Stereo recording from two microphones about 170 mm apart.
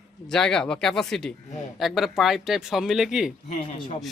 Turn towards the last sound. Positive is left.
turn(degrees=40)  # may be behind; listen again after turning